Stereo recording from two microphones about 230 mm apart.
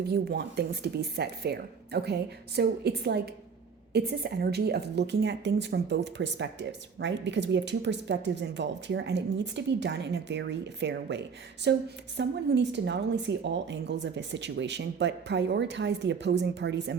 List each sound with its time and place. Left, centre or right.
0.0 s a woman's voice: right